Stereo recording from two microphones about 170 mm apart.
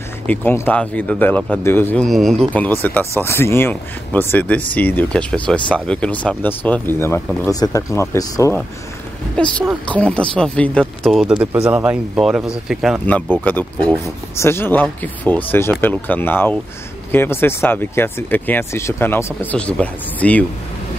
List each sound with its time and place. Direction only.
0.3 s speech: 10° left (ahead or behind)
2.0 s speech: centre (ahead or behind); by 8.6 s 15° left (ahead or behind)
9.8 s speech: 5° left (ahead or behind)
13.0 s speech: 10° left (ahead or behind)